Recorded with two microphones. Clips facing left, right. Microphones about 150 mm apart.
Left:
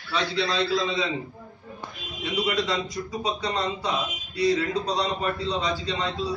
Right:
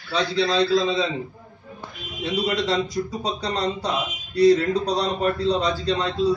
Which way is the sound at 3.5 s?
45° right (ahead or behind).